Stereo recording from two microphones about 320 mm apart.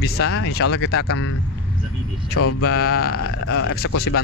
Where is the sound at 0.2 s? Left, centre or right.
Left.